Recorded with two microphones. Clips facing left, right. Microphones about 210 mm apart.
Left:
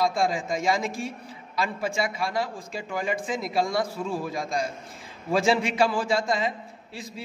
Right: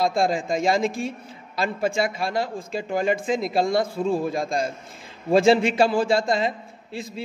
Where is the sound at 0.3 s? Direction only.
25° right (ahead or behind).